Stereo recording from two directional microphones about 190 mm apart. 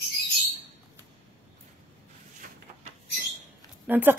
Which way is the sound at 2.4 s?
45° right (ahead or behind).